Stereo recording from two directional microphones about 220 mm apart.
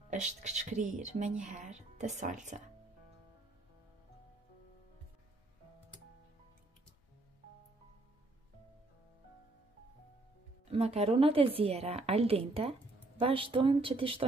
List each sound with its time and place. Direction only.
0.1 s speech: 30° right (ahead or behind)
10.7 s a woman's voice: 25° right (ahead or behind)